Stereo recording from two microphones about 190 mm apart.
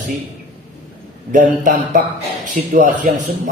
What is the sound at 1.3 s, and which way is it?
Speech, 45° right (ahead or behind).